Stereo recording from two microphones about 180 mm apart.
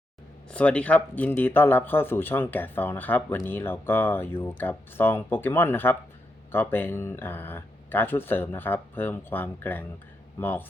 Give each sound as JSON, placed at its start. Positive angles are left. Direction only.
{"t": 0.5, "sound": "speech", "side_deg": 5}